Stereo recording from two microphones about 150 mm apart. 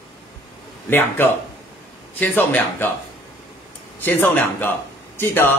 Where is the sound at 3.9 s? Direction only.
15° left (ahead or behind).